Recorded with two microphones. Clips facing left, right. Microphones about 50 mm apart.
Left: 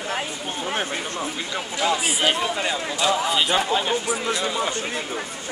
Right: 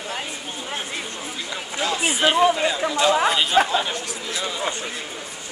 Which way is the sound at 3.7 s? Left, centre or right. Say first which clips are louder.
Left 1 dB; centre.